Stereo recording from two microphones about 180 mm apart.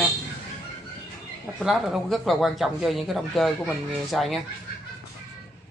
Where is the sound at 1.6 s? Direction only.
Centre (ahead or behind).